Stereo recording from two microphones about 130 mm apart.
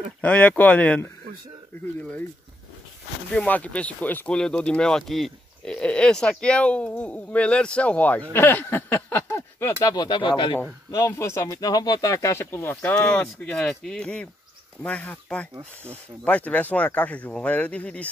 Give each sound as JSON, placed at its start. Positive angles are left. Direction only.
{"t": 0.2, "sound": "speech", "side_deg": 10}
{"t": 3.3, "sound": "speech", "side_deg": 10}
{"t": 9.9, "sound": "speech", "side_deg": 35}
{"t": 10.9, "sound": "speech", "side_deg": 25}
{"t": 12.9, "sound": "speech", "side_deg": 5}